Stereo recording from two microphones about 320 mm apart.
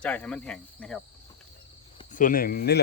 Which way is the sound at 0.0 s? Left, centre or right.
Centre.